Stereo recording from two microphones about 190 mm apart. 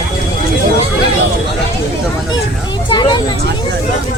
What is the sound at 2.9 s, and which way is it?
Speech, 25° left (ahead or behind).